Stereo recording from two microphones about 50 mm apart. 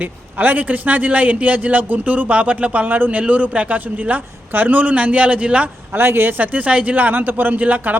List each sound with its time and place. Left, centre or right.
0.0 s a man's voice: right
5.9 s a man's voice: right